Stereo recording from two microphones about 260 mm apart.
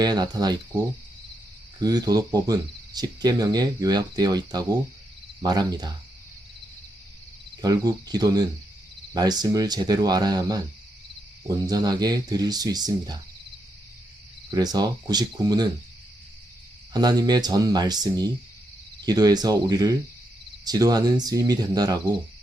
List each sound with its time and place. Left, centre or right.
0.0 s speech: centre
7.6 s speech: centre
14.5 s speech: centre
16.9 s speech: centre